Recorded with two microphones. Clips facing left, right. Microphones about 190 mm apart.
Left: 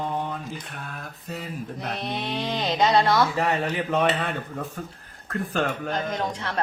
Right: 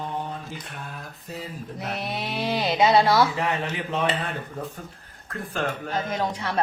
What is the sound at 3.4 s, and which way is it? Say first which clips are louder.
Speech: left 3 dB; 45° left (ahead or behind).